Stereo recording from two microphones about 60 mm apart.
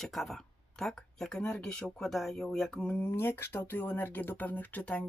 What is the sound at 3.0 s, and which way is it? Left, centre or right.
Speech, left.